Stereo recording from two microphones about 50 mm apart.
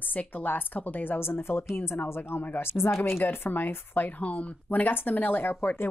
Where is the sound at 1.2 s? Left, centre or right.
Left.